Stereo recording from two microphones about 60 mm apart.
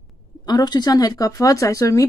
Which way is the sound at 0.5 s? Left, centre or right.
Left.